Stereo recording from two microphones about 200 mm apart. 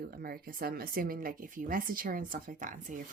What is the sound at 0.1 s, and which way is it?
Speech, 50° right (ahead or behind).